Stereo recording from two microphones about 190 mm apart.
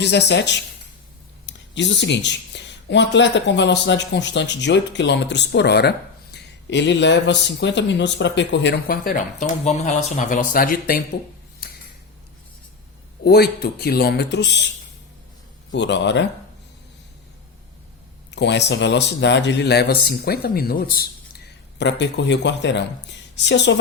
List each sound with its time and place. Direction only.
0.0 s speech: 65° left (ahead or behind)
13.2 s speech: 55° left (ahead or behind)
15.7 s speech: 70° left (ahead or behind)
18.3 s speech: 65° left (ahead or behind); by 21.1 s 50° left (ahead or behind)
21.8 s speech: 65° left (ahead or behind)